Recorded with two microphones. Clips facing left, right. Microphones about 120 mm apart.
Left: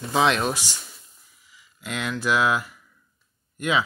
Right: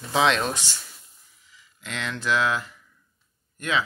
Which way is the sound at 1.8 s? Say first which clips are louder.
Left 3 dB; 10° left (ahead or behind).